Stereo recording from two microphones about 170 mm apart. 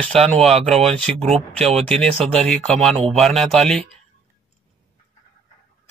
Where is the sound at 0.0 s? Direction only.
35° right (ahead or behind).